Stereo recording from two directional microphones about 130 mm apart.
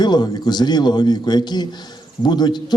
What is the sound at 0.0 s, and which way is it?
A man's voice, 35° left (ahead or behind).